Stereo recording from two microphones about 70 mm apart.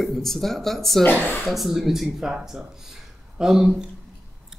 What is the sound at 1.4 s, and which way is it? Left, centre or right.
Speech, centre.